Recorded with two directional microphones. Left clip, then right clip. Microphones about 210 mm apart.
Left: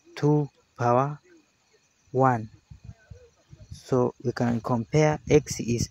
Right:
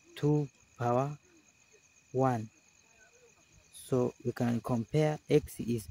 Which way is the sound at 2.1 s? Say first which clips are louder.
Left 8 dB; 15° left (ahead or behind).